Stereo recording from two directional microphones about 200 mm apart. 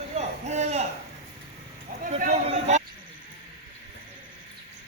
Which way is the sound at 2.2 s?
35° right (ahead or behind).